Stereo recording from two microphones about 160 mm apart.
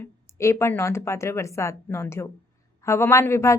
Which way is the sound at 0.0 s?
15° left (ahead or behind).